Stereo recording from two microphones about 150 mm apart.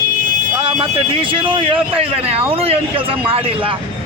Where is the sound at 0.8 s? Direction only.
35° right (ahead or behind).